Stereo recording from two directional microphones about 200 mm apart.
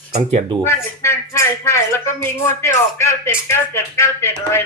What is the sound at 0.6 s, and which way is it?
Speech, 15° left (ahead or behind).